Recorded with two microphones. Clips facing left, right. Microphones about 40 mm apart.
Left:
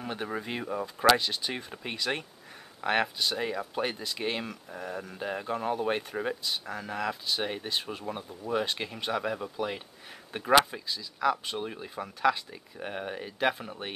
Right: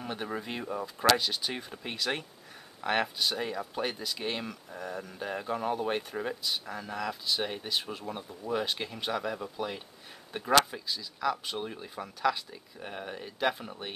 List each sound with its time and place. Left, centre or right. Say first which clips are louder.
0.0 s speech: left 1 dB; centre